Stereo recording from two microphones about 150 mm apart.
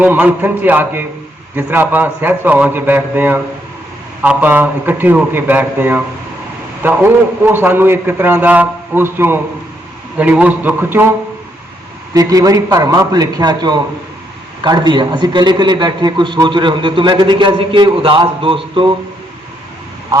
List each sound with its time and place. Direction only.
0.0 s a man's voice: 10° right (ahead or behind)
12.1 s a man's voice: 25° right (ahead or behind)